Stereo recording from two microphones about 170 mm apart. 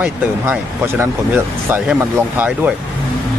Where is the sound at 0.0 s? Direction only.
10° right (ahead or behind).